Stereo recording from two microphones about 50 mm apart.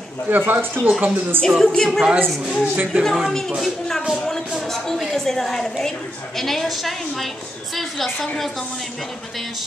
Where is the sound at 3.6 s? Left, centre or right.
Centre.